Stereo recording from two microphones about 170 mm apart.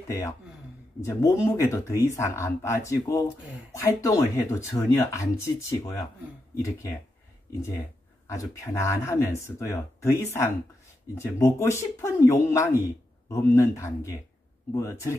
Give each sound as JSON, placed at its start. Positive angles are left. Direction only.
{"t": 1.0, "sound": "speech", "side_deg": 15}
{"t": 8.3, "sound": "speech", "side_deg": 15}